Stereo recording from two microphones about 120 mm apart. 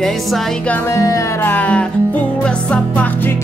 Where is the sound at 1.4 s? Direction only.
15° left (ahead or behind).